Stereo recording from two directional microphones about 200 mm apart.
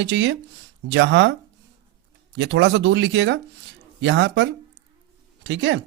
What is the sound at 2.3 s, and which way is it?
Speech, 65° right (ahead or behind).